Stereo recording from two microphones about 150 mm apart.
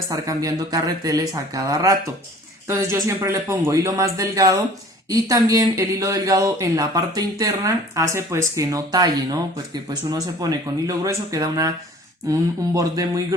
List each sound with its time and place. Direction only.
0.1 s speech: 25° right (ahead or behind)